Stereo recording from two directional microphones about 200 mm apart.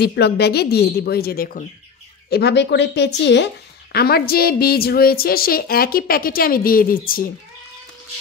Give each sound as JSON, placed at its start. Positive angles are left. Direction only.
{"t": 0.0, "sound": "a woman's voice", "side_deg": 55}